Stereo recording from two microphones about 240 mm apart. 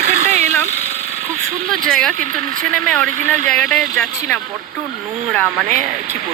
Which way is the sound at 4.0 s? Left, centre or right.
Centre.